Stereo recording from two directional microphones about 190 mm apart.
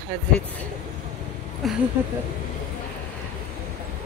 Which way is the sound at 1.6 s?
Centre (ahead or behind).